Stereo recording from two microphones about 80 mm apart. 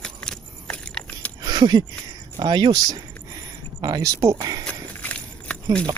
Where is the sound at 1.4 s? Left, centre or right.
Right.